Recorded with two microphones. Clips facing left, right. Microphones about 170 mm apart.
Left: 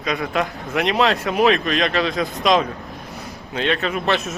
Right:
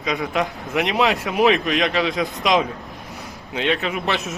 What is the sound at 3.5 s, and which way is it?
Speech, 15° right (ahead or behind).